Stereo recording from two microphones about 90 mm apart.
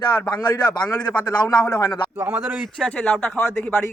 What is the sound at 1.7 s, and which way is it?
Speech, 50° left (ahead or behind).